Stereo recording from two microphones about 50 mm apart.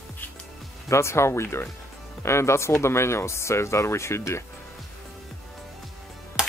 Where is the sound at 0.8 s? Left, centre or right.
Left.